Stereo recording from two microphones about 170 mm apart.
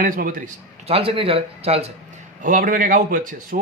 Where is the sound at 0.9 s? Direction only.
35° right (ahead or behind).